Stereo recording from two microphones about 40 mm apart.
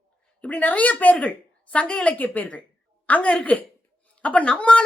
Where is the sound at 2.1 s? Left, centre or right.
Left.